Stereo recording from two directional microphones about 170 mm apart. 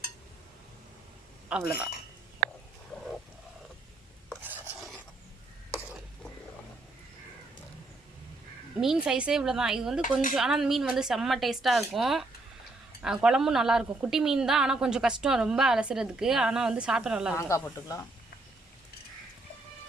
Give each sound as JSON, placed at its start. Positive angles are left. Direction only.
{"t": 1.5, "sound": "speech", "side_deg": -5}
{"t": 2.4, "sound": "a sound", "side_deg": -70}
{"t": 4.4, "sound": "filing", "side_deg": -10}
{"t": 4.8, "sound": "filing", "side_deg": 0}
{"t": 8.8, "sound": "speech", "side_deg": -5}
{"t": 17.3, "sound": "speech", "side_deg": 20}